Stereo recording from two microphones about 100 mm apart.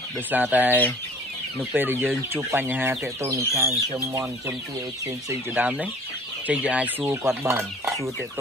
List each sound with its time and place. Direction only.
0.3 s chicken: 15° right (ahead or behind)
1.6 s speech: 20° right (ahead or behind)
3.3 s speech: 35° right (ahead or behind)
5.5 s chicken: 15° right (ahead or behind)
7.4 s speech: 25° right (ahead or behind)